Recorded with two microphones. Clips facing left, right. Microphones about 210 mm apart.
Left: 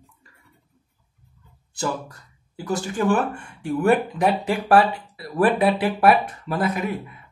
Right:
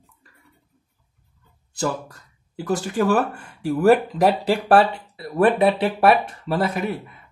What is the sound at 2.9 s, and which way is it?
Speech, 40° right (ahead or behind).